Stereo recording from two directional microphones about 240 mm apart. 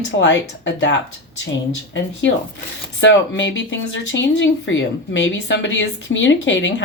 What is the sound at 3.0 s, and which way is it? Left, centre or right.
Speech, left.